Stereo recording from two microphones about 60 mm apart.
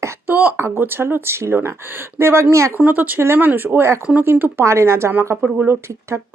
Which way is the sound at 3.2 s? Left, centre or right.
Right.